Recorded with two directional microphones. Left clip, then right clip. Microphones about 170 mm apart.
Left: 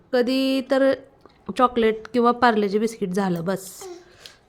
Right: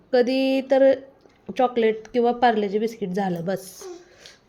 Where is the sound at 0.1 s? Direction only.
10° left (ahead or behind).